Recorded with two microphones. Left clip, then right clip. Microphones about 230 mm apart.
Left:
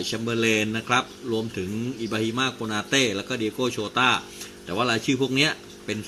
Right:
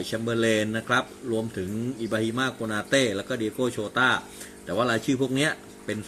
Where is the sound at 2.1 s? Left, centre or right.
Centre.